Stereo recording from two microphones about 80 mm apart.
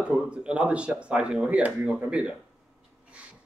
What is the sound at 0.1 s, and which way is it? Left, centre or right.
Speech, centre.